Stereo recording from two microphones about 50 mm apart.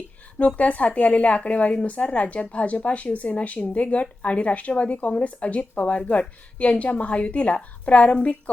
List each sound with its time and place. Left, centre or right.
0.3 s a woman's voice: left